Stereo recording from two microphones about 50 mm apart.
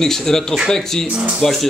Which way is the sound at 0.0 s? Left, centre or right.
Centre.